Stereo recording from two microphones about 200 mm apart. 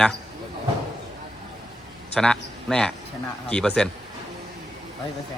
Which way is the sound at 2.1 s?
5° left (ahead or behind).